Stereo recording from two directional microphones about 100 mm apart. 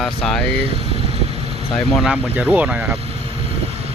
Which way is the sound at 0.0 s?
5° left (ahead or behind).